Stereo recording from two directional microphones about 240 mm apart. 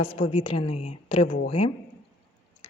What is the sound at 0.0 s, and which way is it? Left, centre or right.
Speech, left.